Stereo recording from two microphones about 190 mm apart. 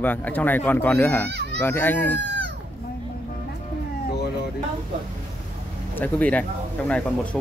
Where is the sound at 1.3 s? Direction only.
60° right (ahead or behind).